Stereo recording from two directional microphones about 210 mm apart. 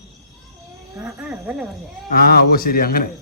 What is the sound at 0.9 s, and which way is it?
Wild animals, 5° right (ahead or behind).